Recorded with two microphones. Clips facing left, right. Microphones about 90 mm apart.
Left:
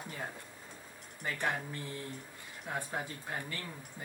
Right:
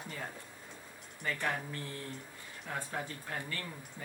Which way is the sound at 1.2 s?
15° left (ahead or behind).